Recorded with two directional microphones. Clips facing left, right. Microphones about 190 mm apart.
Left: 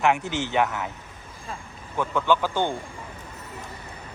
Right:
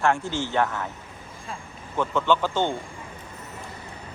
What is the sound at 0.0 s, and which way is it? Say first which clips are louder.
Speech: left 1 dB; 20° left (ahead or behind).